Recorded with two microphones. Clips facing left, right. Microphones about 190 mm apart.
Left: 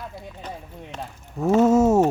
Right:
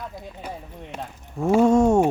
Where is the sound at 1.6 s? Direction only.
5° left (ahead or behind).